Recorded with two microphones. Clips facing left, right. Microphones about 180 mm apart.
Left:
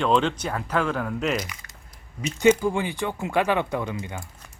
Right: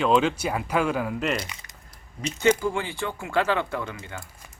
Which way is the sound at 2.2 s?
15° left (ahead or behind).